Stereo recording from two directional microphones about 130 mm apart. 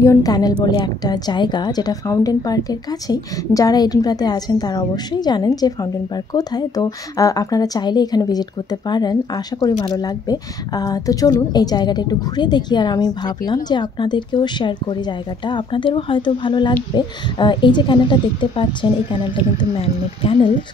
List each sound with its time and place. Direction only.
0.0 s a woman's voice: 25° left (ahead or behind); by 20.5 s 45° left (ahead or behind)